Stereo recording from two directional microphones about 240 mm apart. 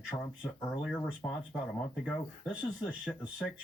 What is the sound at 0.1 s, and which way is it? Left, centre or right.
Speech, centre.